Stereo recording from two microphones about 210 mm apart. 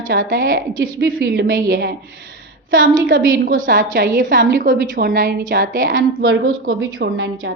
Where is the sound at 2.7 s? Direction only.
40° right (ahead or behind).